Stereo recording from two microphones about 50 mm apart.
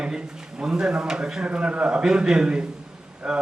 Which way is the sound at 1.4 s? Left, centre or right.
Right.